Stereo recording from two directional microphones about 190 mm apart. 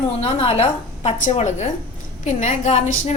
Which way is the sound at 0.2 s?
35° left (ahead or behind).